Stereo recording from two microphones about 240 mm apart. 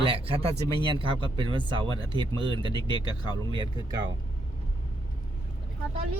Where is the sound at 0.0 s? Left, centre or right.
Right.